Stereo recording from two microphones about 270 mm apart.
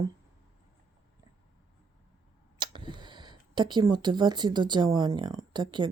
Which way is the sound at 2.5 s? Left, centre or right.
Centre.